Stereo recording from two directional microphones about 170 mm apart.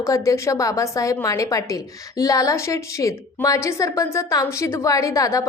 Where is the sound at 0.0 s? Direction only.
20° left (ahead or behind).